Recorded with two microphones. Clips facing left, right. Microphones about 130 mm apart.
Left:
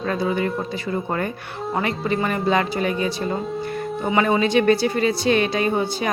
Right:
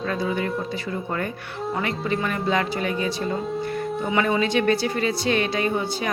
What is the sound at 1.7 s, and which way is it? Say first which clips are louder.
Speech: left 3 dB; 30° left (ahead or behind).